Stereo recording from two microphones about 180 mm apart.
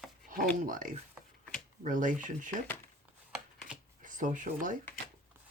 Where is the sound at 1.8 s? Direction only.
45° right (ahead or behind).